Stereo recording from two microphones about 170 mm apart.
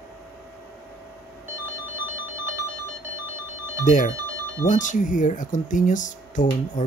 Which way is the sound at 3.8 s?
50° left (ahead or behind).